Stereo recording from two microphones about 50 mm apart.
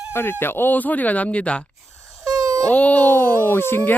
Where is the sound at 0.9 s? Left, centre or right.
Left.